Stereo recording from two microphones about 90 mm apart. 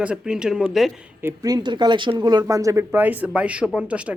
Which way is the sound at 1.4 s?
50° right (ahead or behind).